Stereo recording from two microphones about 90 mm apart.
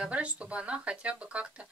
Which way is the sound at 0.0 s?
15° right (ahead or behind).